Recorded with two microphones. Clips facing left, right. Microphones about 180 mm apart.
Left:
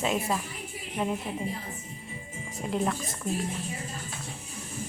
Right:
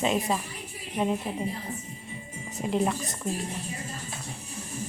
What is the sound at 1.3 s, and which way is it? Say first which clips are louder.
Speech: right 2 dB; 20° right (ahead or behind).